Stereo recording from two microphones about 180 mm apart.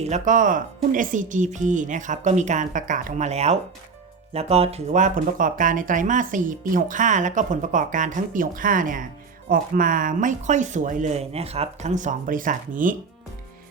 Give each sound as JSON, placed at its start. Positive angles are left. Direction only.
{"t": 0.0, "sound": "speech", "side_deg": -45}